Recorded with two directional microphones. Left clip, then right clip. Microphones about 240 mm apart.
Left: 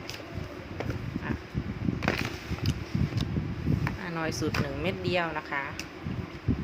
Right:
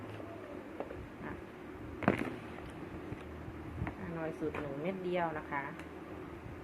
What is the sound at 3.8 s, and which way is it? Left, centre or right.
Basketball bounce, left.